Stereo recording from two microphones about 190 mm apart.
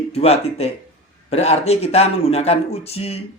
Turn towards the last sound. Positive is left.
turn(degrees=30)  # may be behind; listen again after turning